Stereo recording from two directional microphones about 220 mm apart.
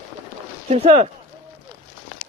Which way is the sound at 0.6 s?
30° right (ahead or behind).